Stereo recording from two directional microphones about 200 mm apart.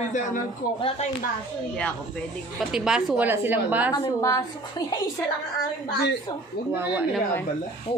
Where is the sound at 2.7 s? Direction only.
5° right (ahead or behind).